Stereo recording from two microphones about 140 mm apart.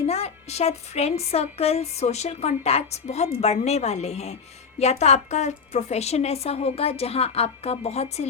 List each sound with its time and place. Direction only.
0.1 s a woman's voice: 50° left (ahead or behind)